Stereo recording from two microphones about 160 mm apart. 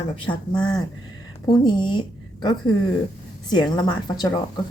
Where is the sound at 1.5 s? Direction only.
30° left (ahead or behind).